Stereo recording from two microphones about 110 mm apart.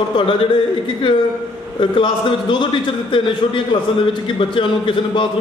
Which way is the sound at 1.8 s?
50° left (ahead or behind).